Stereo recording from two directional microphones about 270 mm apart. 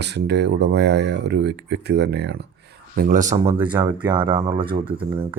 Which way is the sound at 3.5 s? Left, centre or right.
Centre.